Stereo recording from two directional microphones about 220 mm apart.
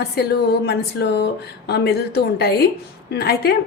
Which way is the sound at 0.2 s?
45° left (ahead or behind).